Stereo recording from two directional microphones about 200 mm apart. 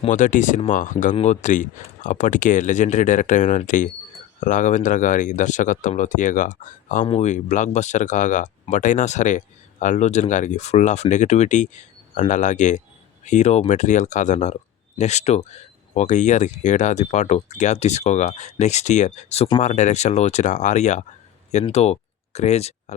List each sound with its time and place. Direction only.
0.0 s speech: 40° left (ahead or behind)